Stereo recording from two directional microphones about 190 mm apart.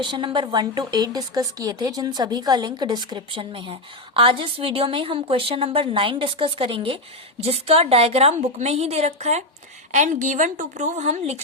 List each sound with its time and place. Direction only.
0.0 s a woman's voice: 25° right (ahead or behind)